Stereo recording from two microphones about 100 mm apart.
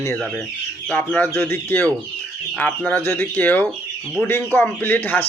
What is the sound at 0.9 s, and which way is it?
Speech, 15° left (ahead or behind).